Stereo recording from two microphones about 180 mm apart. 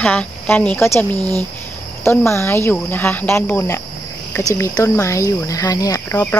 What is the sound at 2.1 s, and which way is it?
Speech, 15° left (ahead or behind).